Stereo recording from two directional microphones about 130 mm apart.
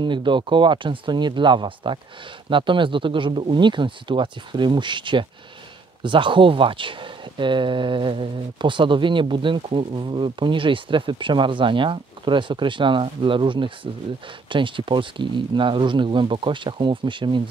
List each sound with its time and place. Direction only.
0.0 s speech: 35° right (ahead or behind)